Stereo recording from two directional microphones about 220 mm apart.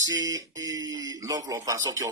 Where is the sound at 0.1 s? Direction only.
15° right (ahead or behind).